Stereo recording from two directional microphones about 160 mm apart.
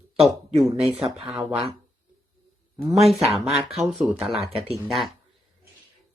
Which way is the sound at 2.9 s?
Centre (ahead or behind).